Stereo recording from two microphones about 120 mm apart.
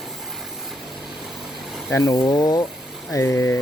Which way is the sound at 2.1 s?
35° left (ahead or behind).